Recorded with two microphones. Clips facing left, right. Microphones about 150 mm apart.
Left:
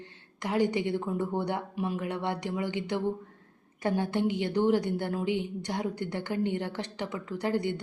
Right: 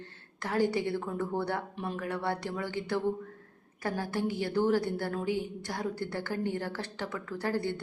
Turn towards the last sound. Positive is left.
turn(degrees=15)  # may be behind; listen again after turning